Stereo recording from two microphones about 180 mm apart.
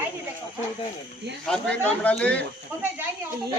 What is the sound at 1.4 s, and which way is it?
Speech, 5° left (ahead or behind).